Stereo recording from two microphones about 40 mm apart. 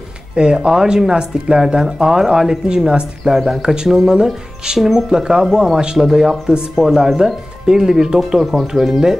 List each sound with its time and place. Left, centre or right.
0.4 s speech: centre
3.3 s speech: centre
3.6 s speech: centre
5.2 s speech: centre
8.3 s speech: centre